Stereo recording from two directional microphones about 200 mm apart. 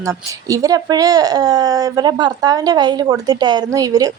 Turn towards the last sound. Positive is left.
turn(degrees=-20)  # may be behind; listen again after turning